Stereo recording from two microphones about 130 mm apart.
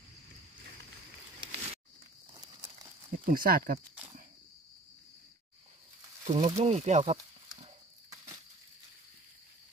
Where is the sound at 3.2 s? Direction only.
90° right.